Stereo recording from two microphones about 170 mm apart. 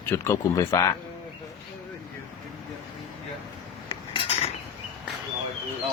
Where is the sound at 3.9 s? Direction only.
35° left (ahead or behind).